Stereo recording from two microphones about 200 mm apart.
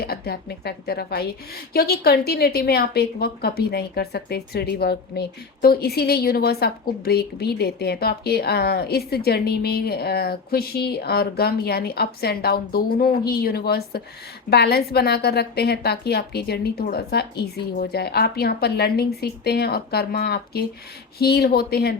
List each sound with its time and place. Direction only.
0.0 s a woman's voice: 50° left (ahead or behind)